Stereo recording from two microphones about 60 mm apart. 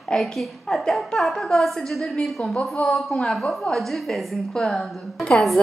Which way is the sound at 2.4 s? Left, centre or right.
Left.